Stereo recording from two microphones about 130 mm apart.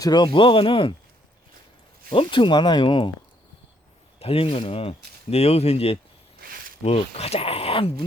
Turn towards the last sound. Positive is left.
turn(degrees=45)  # may be behind; listen again after turning